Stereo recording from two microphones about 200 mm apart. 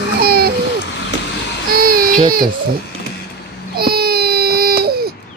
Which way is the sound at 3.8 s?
50° right (ahead or behind).